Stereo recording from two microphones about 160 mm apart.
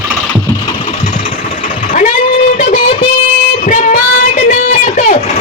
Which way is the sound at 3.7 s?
55° left (ahead or behind).